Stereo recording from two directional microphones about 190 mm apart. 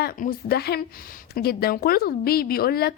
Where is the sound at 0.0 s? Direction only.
50° left (ahead or behind).